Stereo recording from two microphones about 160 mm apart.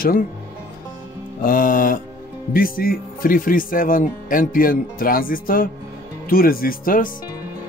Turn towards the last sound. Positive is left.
turn(degrees=60)  # may be behind; listen again after turning